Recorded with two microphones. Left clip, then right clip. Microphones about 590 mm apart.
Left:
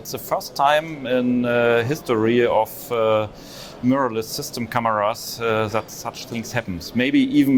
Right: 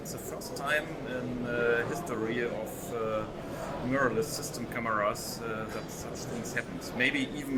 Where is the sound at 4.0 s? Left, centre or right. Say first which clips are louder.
Left 7 dB; left.